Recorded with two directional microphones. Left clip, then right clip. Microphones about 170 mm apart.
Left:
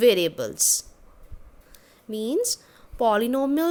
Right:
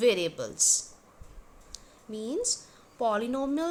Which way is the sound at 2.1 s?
50° left (ahead or behind).